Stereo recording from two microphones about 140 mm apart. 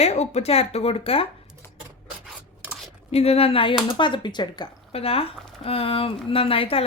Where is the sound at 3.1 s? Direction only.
45° left (ahead or behind).